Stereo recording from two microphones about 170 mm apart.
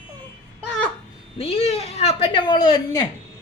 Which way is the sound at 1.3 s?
35° left (ahead or behind).